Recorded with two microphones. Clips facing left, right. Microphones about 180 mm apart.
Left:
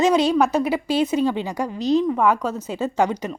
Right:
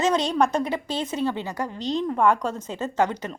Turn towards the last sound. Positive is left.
turn(degrees=10)  # may be behind; listen again after turning